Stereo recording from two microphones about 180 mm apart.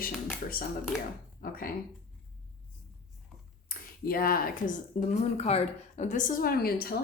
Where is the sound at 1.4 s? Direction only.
55° left (ahead or behind).